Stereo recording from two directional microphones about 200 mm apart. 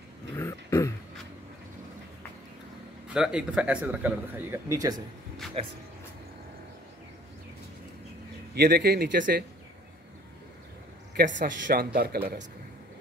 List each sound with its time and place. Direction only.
0.4 s throat clearing: 15° left (ahead or behind)
3.1 s speech: 5° right (ahead or behind)
5.6 s speech: 30° right (ahead or behind)
8.5 s speech: 50° right (ahead or behind)
11.3 s speech: 40° right (ahead or behind)